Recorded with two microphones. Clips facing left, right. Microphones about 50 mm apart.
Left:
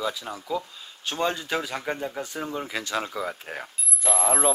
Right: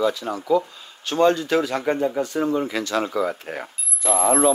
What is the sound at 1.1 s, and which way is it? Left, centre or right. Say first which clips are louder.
Speech: right 8 dB; centre.